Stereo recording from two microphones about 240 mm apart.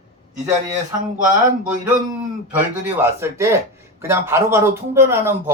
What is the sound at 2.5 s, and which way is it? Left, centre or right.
Speech, centre.